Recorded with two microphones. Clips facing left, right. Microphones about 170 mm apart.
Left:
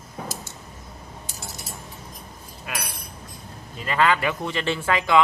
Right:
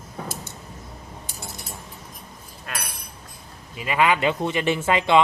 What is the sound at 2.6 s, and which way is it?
Speech, centre (ahead or behind).